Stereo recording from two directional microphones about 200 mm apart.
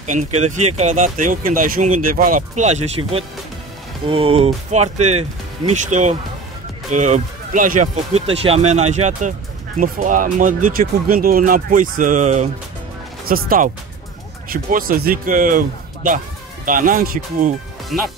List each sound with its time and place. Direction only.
0.0 s speech: 40° right (ahead or behind)
13.2 s speech: 45° right (ahead or behind)